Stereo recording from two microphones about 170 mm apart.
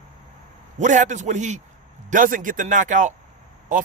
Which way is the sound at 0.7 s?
50° right (ahead or behind).